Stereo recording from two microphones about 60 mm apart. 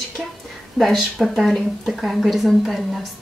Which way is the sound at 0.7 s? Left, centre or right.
Centre.